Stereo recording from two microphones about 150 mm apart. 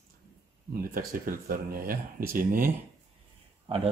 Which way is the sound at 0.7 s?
70° right (ahead or behind).